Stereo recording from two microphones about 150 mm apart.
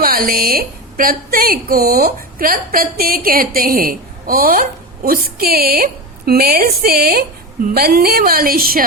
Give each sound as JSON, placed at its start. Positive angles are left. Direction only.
{"t": 0.0, "sound": "a woman's voice", "side_deg": -80}